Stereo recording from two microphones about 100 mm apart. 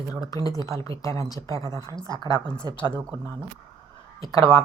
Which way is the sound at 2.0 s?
45° left (ahead or behind).